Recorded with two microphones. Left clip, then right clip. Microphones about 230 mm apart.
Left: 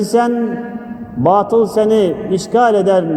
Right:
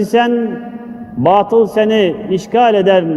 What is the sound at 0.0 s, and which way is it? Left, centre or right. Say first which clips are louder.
Speech: right 1 dB; right.